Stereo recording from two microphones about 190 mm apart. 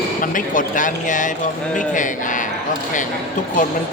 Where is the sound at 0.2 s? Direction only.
45° left (ahead or behind).